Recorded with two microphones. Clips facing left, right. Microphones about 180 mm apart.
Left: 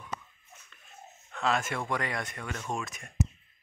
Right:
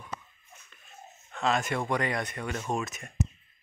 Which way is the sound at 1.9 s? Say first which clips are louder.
Right 4 dB; centre (ahead or behind).